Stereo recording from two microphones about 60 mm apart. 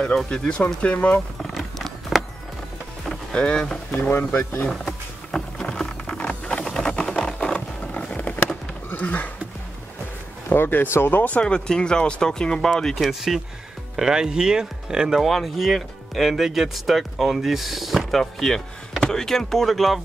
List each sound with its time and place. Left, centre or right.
0.0 s speech: centre
1.4 s a sound: centre
3.1 s speech: centre
4.0 s speech: left
4.8 s boat: centre
5.7 s music: centre
6.1 s a sound: centre
9.0 s speech: left
10.5 s speech: left
11.3 s speech: centre
12.9 s speech: centre
15.2 s speech: centre